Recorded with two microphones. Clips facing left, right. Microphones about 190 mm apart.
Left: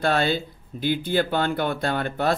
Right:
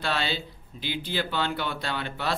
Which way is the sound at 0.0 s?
50° left (ahead or behind).